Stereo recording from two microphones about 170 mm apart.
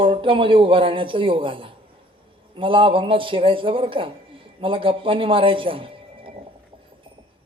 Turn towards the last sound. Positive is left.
turn(degrees=-30)  # may be behind; listen again after turning